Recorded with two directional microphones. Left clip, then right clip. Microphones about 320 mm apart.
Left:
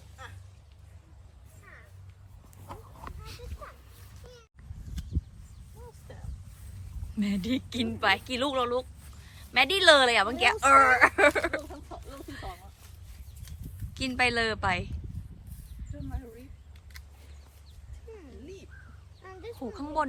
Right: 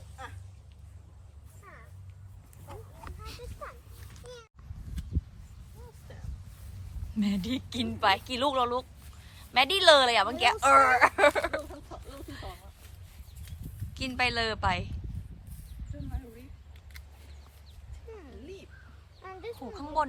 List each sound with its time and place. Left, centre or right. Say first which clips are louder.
0.2 s vehicle: right 2 dB; right
1.7 s music: even; centre
3.0 s a sound: even; centre
6.1 s boat: left 1 dB; centre
7.2 s a woman's voice: left 1 dB; centre
13.9 s a woman's voice: left 2 dB; centre
16.9 s a sound: left 1 dB; centre
19.2 s a sound: right 2 dB; centre
19.7 s a woman's voice: even; centre